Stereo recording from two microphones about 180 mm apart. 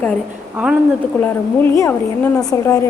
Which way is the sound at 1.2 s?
10° left (ahead or behind).